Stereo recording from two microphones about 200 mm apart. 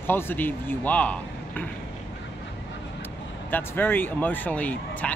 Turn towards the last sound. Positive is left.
turn(degrees=5)  # may be behind; listen again after turning